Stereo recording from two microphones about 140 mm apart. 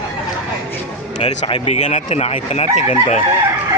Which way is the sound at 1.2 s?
40° left (ahead or behind).